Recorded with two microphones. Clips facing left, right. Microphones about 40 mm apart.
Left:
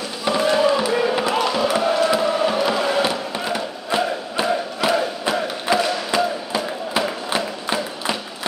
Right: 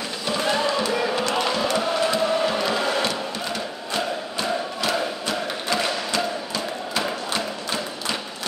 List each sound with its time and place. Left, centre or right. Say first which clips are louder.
0.4 s a sound: left 5 dB; centre
1.5 s music: left 4 dB; centre
2.7 s chant: left 3 dB; centre
3.1 s music: left 4 dB; centre
6.1 s a sound: left 5 dB; centre
7.2 s music: left 4 dB; centre